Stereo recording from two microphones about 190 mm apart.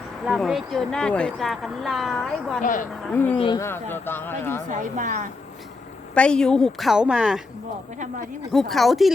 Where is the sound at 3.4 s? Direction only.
25° left (ahead or behind).